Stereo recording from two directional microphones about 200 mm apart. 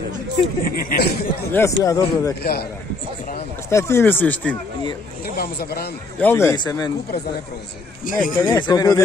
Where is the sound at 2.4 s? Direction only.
50° left (ahead or behind).